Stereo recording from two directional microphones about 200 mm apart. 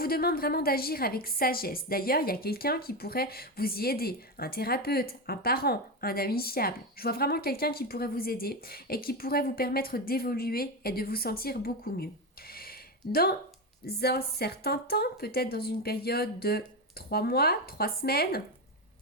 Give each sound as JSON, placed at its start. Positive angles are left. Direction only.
{"t": 0.0, "sound": "a woman's voice", "side_deg": 50}
{"t": 12.5, "sound": "a sound", "side_deg": 50}
{"t": 13.8, "sound": "a woman's voice", "side_deg": 50}